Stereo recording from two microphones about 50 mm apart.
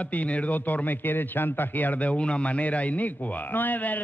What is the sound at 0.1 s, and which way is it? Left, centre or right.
A man's voice, left.